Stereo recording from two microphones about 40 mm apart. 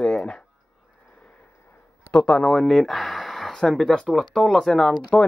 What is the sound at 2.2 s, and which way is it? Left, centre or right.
Speech, left.